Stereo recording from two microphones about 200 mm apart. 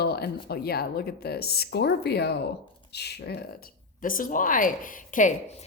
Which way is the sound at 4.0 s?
45° left (ahead or behind).